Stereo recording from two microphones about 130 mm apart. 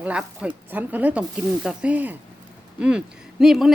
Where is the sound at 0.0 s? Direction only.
10° right (ahead or behind).